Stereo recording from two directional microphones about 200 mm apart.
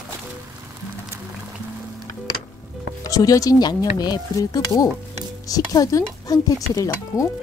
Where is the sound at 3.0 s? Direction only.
15° left (ahead or behind).